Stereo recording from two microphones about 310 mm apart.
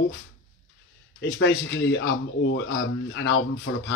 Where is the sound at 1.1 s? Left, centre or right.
Left.